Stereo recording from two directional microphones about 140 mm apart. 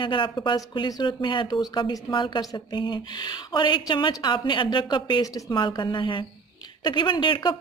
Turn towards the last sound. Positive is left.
turn(degrees=35)  # may be behind; listen again after turning